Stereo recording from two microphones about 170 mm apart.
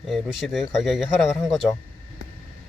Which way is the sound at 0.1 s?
Centre (ahead or behind).